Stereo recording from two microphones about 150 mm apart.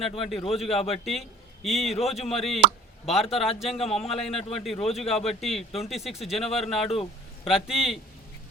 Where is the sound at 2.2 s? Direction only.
40° left (ahead or behind).